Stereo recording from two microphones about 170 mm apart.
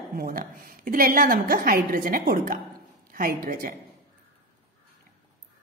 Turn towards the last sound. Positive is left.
turn(degrees=-55)  # may be behind; listen again after turning